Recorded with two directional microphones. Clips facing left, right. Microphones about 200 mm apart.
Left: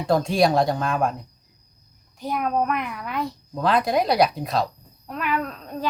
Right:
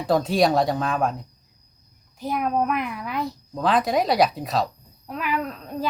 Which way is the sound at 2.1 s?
Centre (ahead or behind).